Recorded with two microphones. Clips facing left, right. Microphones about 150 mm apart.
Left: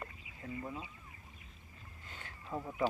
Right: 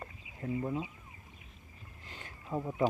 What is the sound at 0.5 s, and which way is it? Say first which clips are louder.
Speech: right 8 dB; 20° right (ahead or behind).